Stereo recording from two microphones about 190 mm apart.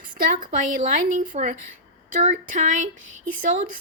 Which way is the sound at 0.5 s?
40° right (ahead or behind).